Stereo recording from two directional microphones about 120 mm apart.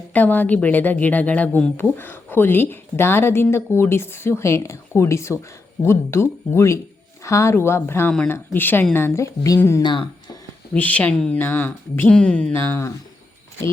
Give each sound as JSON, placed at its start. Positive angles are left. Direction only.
{"t": 0.1, "sound": "a woman's voice", "side_deg": 15}
{"t": 9.8, "sound": "speech", "side_deg": 40}
{"t": 10.8, "sound": "a woman's voice", "side_deg": 10}